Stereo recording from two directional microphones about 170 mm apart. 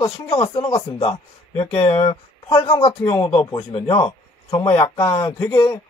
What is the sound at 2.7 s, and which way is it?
A man's voice, 20° left (ahead or behind).